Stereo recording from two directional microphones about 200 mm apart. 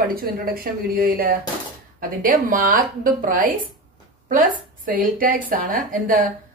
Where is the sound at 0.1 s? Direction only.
45° right (ahead or behind).